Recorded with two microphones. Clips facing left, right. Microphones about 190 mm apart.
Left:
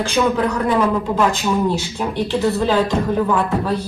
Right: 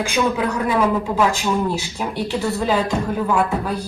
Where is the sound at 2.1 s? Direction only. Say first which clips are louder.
Left 4 dB; 10° right (ahead or behind).